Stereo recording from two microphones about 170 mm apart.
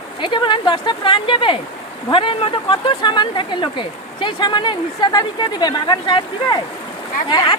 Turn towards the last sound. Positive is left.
turn(degrees=25)  # may be behind; listen again after turning